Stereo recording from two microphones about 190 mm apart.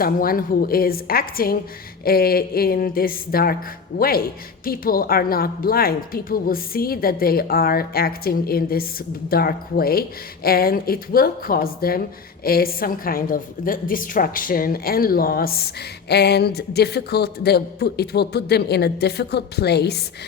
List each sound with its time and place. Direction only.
0.0 s a woman's voice: 50° left (ahead or behind)